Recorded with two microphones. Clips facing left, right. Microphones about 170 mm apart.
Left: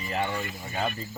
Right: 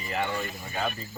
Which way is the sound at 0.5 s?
20° left (ahead or behind).